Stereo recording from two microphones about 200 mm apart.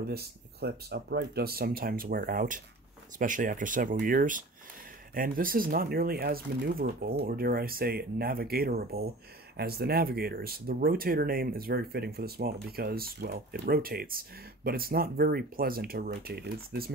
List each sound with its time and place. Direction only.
0.0 s speech: 50° right (ahead or behind)